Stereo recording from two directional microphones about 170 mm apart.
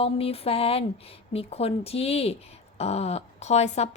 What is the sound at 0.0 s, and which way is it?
A woman's voice, 35° left (ahead or behind).